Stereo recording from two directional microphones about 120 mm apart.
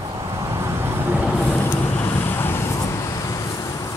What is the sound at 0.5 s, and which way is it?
Vehicle, 20° right (ahead or behind).